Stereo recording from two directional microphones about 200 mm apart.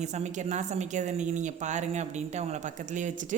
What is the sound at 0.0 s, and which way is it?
A woman's voice, 35° right (ahead or behind).